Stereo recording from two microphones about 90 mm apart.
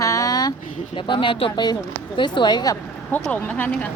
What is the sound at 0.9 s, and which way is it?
Speech, 65° left (ahead or behind).